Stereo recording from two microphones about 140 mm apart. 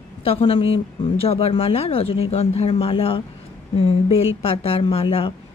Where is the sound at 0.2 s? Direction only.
40° left (ahead or behind).